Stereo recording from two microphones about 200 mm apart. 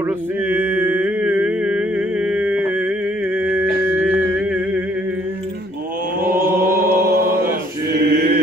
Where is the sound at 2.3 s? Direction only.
5° right (ahead or behind).